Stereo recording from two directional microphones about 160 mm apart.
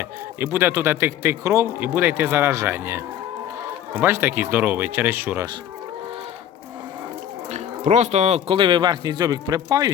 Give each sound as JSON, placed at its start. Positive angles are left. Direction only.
{"t": 0.3, "sound": "speech", "side_deg": -15}
{"t": 7.5, "sound": "speech", "side_deg": -45}